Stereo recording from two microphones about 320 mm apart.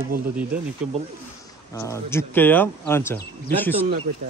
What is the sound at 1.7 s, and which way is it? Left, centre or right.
Speech, centre.